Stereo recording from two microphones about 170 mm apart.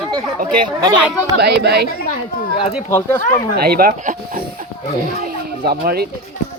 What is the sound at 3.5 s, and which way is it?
Speech, 65° right (ahead or behind).